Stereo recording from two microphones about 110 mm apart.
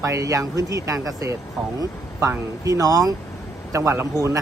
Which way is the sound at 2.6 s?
30° right (ahead or behind).